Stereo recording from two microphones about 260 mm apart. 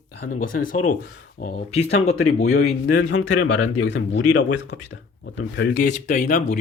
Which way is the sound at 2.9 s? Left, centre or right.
Left.